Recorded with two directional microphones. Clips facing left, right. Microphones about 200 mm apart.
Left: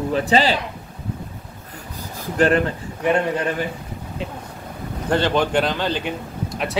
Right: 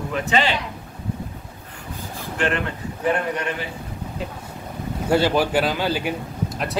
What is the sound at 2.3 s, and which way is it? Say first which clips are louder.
Speech: left 7 dB; 40° left (ahead or behind).